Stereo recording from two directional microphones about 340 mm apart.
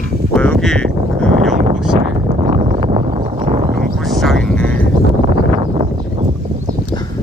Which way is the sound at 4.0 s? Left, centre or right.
Centre.